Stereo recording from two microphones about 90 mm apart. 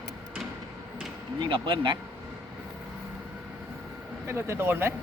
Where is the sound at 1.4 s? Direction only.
70° right (ahead or behind).